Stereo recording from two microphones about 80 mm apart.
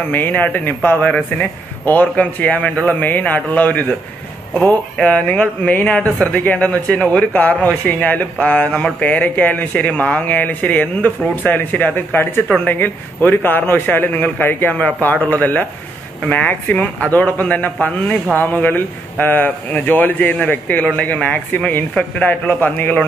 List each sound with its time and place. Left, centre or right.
0.1 s speech: left